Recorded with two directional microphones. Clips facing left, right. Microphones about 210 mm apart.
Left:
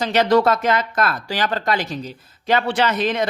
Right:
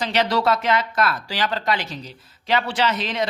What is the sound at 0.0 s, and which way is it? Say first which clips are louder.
A woman's voice: left 5 dB; 45° left (ahead or behind).